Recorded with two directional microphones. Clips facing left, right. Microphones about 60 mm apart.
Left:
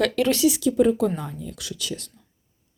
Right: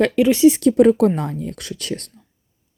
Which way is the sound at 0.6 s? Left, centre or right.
Right.